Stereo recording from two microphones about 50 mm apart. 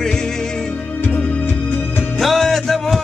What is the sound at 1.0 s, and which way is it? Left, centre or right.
Music, left.